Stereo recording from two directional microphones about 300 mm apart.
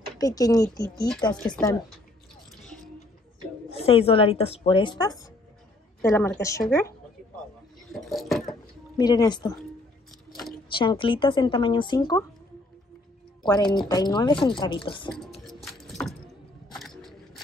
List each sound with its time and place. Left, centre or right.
0.2 s a woman's voice: centre
3.7 s a woman's voice: centre
8.0 s a sound: centre
8.9 s a woman's voice: centre
10.8 s a woman's voice: centre
13.4 s a woman's voice: centre
15.4 s a sound: centre